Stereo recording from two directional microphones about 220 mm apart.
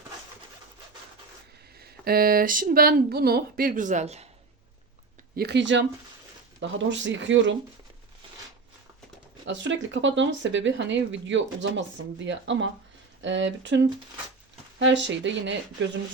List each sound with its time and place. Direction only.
1.8 s speech: 45° right (ahead or behind)
5.4 s speech: 50° right (ahead or behind)
9.5 s speech: 55° right (ahead or behind)